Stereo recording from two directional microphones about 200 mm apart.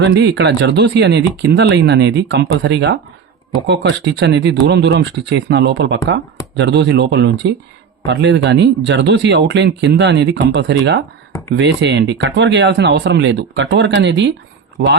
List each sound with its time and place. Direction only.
0.0 s speech: 60° right (ahead or behind)